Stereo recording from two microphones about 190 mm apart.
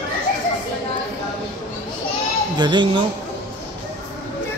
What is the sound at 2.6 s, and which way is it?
Speech, 25° right (ahead or behind).